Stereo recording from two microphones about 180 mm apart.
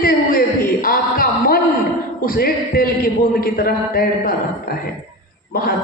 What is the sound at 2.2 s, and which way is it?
A man's voice, 55° left (ahead or behind).